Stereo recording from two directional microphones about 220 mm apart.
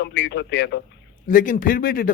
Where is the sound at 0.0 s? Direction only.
55° left (ahead or behind).